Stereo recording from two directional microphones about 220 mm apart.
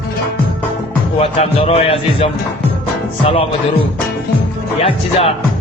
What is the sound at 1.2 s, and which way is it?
A man's voice, 25° left (ahead or behind).